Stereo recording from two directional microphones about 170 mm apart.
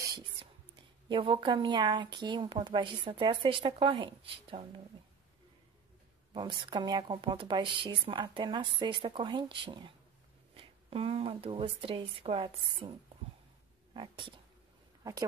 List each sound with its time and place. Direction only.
1.0 s speech: 30° right (ahead or behind)
6.3 s speech: 30° right (ahead or behind)
13.9 s speech: 30° right (ahead or behind)